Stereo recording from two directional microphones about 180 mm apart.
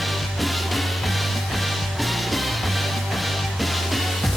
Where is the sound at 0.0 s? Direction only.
Centre (ahead or behind).